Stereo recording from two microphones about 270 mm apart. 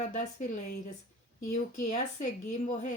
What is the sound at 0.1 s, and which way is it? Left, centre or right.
Speech, left.